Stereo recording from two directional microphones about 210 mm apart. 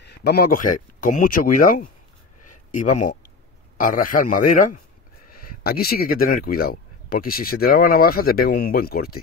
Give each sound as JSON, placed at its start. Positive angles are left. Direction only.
{"t": 0.0, "sound": "speech", "side_deg": 50}
{"t": 3.7, "sound": "a man's voice", "side_deg": 40}